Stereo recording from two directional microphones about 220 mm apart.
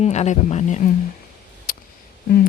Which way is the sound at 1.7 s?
40° left (ahead or behind).